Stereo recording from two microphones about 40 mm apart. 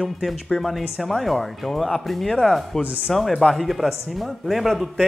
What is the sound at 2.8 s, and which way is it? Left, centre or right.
Speech, right.